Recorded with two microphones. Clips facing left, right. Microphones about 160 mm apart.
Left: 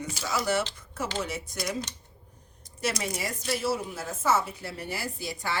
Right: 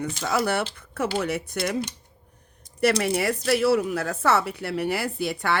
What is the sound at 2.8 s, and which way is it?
A woman's voice, 65° right (ahead or behind).